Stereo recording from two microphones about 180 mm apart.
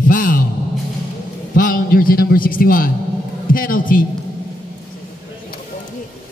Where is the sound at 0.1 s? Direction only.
50° left (ahead or behind).